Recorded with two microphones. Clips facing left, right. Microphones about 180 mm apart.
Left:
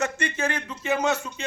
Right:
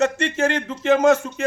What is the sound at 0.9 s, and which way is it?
Speech, 50° right (ahead or behind).